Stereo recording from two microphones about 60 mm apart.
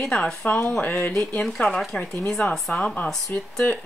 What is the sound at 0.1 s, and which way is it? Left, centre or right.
Speech, centre.